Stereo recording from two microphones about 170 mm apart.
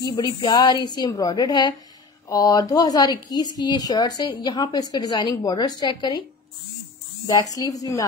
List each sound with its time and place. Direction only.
0.0 s a woman's voice: 25° left (ahead or behind)
7.2 s a woman's voice: 20° left (ahead or behind)